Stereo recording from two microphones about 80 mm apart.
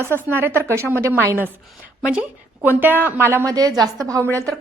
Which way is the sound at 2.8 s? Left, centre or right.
Right.